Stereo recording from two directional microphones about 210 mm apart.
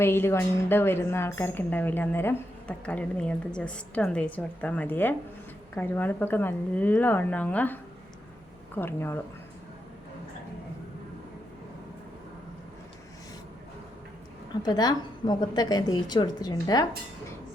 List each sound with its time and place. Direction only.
0.0 s a woman's voice: 10° left (ahead or behind)
14.6 s a woman's voice: 20° left (ahead or behind)